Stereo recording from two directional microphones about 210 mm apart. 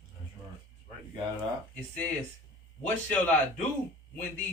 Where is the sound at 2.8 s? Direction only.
10° left (ahead or behind).